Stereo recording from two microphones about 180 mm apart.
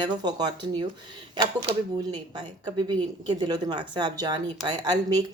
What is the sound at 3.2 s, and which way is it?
Speech, 25° right (ahead or behind).